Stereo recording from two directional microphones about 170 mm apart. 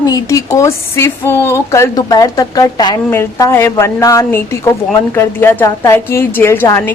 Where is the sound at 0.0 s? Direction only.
20° left (ahead or behind).